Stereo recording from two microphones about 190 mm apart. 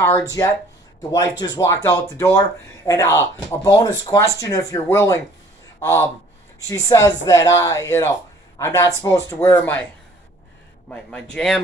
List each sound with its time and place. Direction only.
0.0 s speech: 15° left (ahead or behind)
10.9 s a man's voice: 5° left (ahead or behind)